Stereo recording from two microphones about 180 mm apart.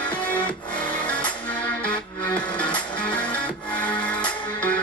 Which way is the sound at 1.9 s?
5° left (ahead or behind).